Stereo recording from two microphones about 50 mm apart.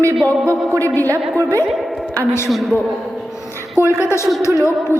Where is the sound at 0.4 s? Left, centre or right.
Right.